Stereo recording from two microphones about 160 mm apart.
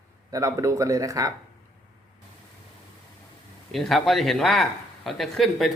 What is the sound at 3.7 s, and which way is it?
Speech, centre (ahead or behind).